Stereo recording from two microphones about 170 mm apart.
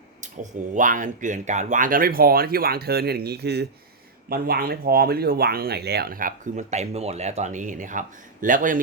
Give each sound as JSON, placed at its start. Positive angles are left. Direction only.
{"t": 0.7, "sound": "speech", "side_deg": -50}
{"t": 4.3, "sound": "speech", "side_deg": -60}